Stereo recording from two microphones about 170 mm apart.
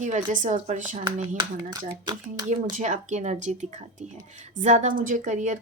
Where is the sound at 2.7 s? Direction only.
45° right (ahead or behind).